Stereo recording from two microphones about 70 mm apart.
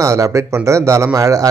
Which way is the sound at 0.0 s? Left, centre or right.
Right.